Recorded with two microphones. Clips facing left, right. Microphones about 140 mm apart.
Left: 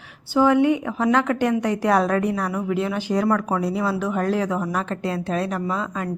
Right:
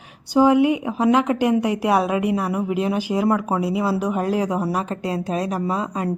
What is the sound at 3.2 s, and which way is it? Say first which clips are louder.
Speech: right 2 dB; 25° right (ahead or behind).